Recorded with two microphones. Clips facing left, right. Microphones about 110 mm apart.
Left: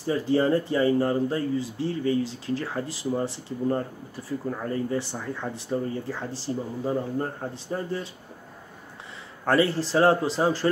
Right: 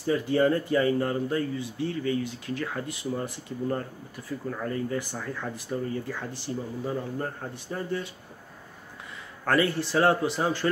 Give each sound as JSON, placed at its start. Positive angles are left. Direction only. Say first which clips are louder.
{"t": 0.0, "sound": "speech", "louder": "even", "side_deg": 30}
{"t": 9.5, "sound": "speech", "louder": "left 2 dB", "side_deg": 30}